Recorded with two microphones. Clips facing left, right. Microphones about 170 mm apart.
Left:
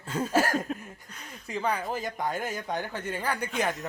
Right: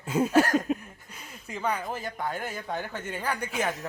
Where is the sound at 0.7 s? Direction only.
5° right (ahead or behind).